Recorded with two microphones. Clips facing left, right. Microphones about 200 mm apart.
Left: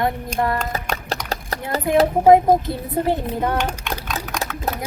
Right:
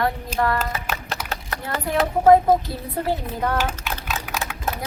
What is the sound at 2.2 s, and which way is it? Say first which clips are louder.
A woman's voice: even; 15° left (ahead or behind).